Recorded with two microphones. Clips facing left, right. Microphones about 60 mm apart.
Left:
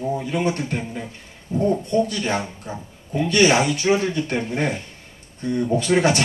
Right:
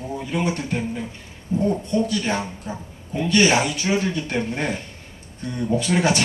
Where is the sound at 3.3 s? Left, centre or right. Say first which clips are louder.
Left 1 dB; left.